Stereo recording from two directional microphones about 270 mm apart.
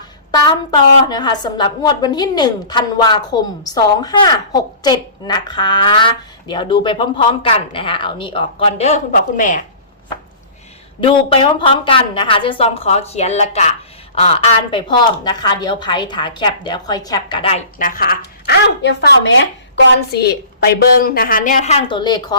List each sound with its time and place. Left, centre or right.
0.3 s a woman's voice: centre
11.0 s a woman's voice: centre